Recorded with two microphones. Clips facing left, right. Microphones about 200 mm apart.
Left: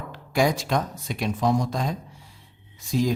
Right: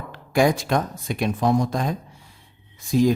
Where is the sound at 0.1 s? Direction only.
55° right (ahead or behind).